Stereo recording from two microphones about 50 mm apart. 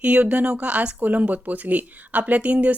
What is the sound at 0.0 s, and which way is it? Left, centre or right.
Speech, right.